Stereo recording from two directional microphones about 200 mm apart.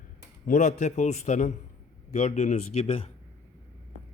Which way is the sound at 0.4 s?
35° left (ahead or behind).